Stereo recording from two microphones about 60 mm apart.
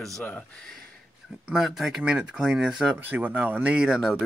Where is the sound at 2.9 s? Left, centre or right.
Right.